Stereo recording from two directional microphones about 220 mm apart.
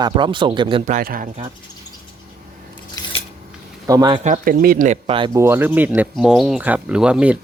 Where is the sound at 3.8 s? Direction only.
15° right (ahead or behind).